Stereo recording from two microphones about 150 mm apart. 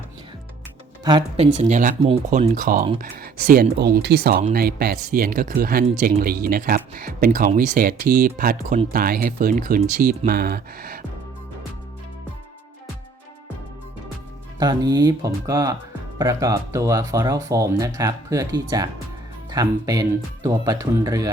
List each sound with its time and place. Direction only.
1.4 s speech: 50° right (ahead or behind); by 8.8 s 70° right (ahead or behind)
8.9 s speech: 80° right
10.0 s speech: 80° right
14.6 s speech: 25° right (ahead or behind)